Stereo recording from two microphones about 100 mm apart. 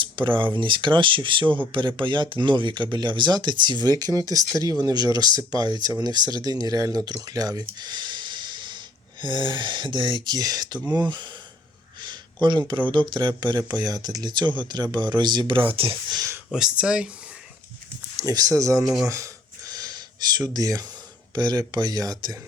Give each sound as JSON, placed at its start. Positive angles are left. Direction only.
{"t": 0.0, "sound": "speech", "side_deg": -55}
{"t": 12.0, "sound": "a sound", "side_deg": -50}
{"t": 12.9, "sound": "speech", "side_deg": -50}
{"t": 16.5, "sound": "speech", "side_deg": -5}
{"t": 18.2, "sound": "speech", "side_deg": -40}
{"t": 19.0, "sound": "a sound", "side_deg": -30}
{"t": 21.3, "sound": "speech", "side_deg": -45}